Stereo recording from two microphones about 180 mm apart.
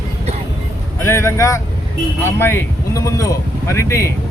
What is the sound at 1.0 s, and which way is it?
Speech, 15° left (ahead or behind).